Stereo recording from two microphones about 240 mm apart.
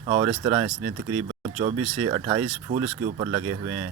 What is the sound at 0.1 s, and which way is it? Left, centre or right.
Speech, centre.